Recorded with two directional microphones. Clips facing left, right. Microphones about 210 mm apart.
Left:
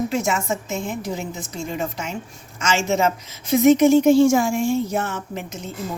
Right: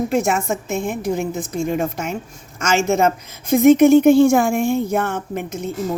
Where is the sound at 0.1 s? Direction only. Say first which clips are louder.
Right 4 dB; 55° right (ahead or behind).